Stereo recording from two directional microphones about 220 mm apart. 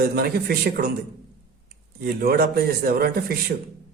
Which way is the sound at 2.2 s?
45° right (ahead or behind).